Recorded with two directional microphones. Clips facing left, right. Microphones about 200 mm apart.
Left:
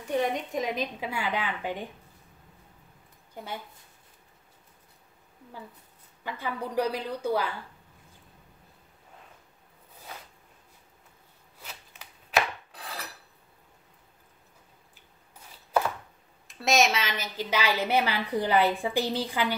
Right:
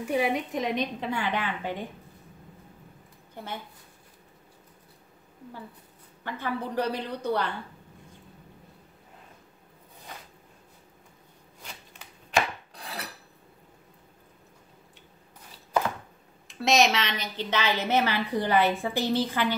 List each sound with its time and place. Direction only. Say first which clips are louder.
0.0 s a woman's voice: right 2 dB; 10° right (ahead or behind); by 1.8 s 10° left (ahead or behind)
6.2 s a woman's voice: right 2 dB; 10° left (ahead or behind)
11.6 s chopping: right 1 dB; 5° left (ahead or behind)
16.4 s a woman's voice: right 1 dB; centre (ahead or behind)